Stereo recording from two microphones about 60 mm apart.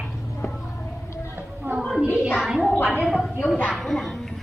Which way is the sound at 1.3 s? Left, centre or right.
Right.